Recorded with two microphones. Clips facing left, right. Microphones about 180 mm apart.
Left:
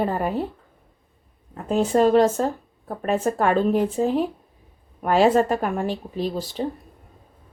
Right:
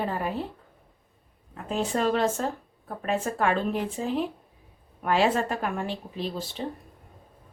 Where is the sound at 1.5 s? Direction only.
40° left (ahead or behind).